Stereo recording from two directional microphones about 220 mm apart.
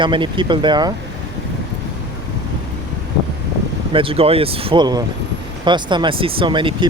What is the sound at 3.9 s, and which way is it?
Speech, 25° right (ahead or behind).